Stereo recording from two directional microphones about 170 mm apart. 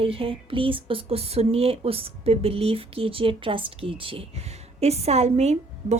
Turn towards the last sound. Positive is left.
turn(degrees=-40)  # may be behind; listen again after turning